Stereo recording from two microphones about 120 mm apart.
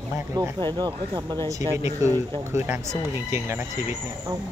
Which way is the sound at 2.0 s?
25° right (ahead or behind).